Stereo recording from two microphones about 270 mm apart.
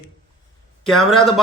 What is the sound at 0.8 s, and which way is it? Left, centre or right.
Speech, centre.